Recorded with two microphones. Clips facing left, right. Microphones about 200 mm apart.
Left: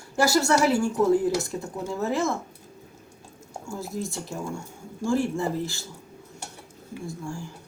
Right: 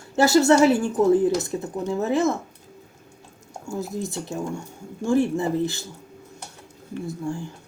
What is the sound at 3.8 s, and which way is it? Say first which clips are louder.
Speech: right 3 dB; 20° right (ahead or behind).